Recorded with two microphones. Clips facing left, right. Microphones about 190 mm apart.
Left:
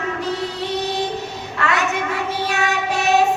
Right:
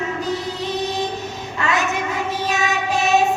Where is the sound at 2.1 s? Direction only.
65° left (ahead or behind).